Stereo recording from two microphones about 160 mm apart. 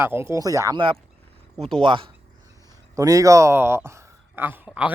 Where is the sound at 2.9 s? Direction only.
20° right (ahead or behind).